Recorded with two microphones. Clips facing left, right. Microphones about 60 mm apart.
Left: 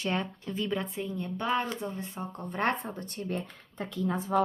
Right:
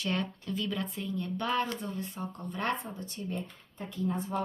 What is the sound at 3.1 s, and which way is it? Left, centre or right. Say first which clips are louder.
Speech: left 3 dB; left.